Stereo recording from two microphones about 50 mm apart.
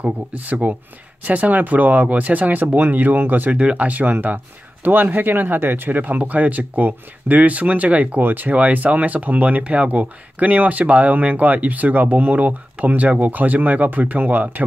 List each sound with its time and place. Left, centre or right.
0.0 s speech: right
3.5 s speech: right